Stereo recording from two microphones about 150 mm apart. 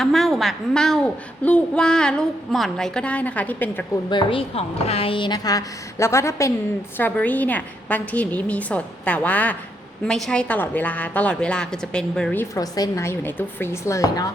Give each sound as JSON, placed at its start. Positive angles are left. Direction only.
{"t": 0.0, "sound": "a woman's voice", "side_deg": 0}
{"t": 4.1, "sound": "a woman's voice", "side_deg": 35}
{"t": 12.5, "sound": "a woman's voice", "side_deg": 25}